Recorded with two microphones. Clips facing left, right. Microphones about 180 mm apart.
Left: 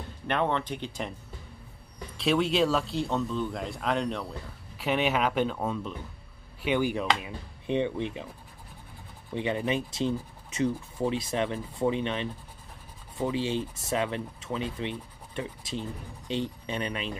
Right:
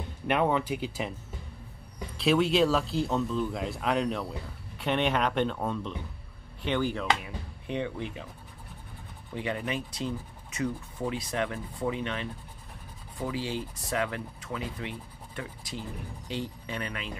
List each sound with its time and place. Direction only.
0.3 s speech: 10° right (ahead or behind)
2.1 s speech: centre (ahead or behind); by 8.3 s 20° left (ahead or behind)
9.3 s speech: 20° left (ahead or behind)